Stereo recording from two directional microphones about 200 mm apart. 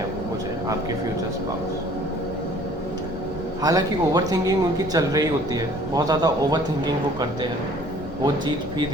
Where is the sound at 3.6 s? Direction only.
20° right (ahead or behind).